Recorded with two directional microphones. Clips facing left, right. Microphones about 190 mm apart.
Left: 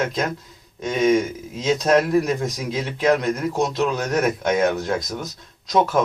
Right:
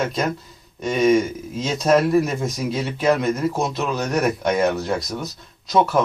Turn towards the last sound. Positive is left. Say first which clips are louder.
# right 1 dB
turn(degrees=0)  # may be behind; listen again after turning